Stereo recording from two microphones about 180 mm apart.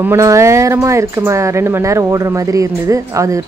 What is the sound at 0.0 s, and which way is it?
Speech, 15° right (ahead or behind).